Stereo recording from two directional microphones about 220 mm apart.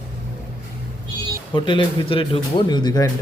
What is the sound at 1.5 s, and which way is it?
Speech, 20° left (ahead or behind).